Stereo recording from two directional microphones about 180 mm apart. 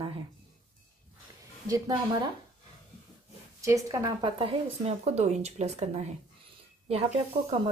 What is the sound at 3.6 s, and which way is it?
Speech, 15° right (ahead or behind).